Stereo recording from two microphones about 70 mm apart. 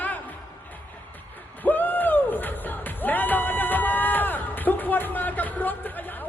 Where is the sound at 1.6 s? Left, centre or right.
Left.